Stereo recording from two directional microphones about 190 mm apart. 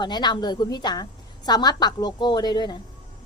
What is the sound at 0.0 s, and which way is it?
A woman's voice, 20° left (ahead or behind).